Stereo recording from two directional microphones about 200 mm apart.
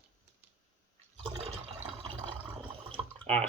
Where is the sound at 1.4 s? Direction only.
30° right (ahead or behind).